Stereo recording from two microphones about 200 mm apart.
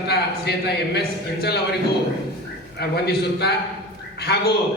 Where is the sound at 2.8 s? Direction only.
55° left (ahead or behind).